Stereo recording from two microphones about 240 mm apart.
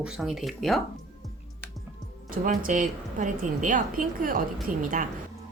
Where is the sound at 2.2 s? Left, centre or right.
Right.